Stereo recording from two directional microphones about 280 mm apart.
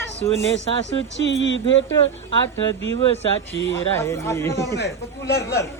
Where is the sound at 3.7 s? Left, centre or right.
Centre.